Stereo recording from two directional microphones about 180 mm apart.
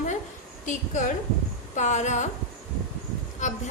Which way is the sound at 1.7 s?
40° left (ahead or behind).